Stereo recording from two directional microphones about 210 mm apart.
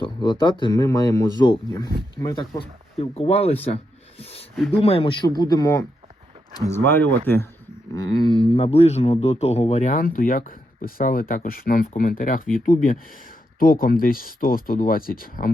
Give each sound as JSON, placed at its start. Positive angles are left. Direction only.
{"t": 0.0, "sound": "speech", "side_deg": 20}
{"t": 3.0, "sound": "speech", "side_deg": 30}
{"t": 4.2, "sound": "a sound", "side_deg": 30}
{"t": 4.8, "sound": "speech", "side_deg": 25}
{"t": 7.9, "sound": "speech", "side_deg": 20}